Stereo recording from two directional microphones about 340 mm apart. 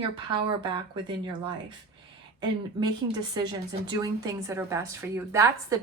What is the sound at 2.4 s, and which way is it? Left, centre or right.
A woman's voice, centre.